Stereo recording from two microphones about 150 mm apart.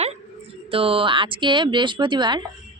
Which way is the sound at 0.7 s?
40° right (ahead or behind).